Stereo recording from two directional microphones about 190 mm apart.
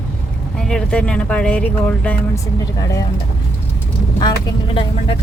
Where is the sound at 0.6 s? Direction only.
5° left (ahead or behind).